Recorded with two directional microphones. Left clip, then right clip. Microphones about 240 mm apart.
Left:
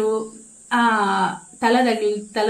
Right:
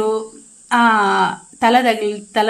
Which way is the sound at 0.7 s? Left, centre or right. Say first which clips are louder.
Right 5 dB; right.